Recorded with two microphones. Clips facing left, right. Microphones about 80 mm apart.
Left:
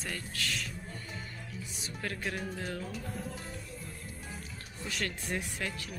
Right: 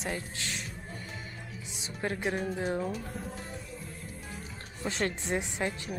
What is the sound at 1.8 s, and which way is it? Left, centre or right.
Speech, right.